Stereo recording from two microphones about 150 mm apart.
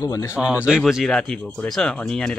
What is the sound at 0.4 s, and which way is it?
Speech, 5° right (ahead or behind).